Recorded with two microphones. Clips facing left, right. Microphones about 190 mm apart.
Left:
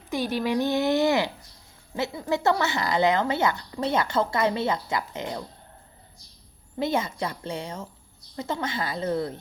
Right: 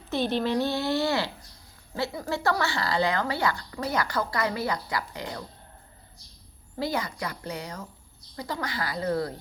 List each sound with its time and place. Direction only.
0.1 s a woman's voice: 10° left (ahead or behind)
6.7 s a woman's voice: 25° left (ahead or behind)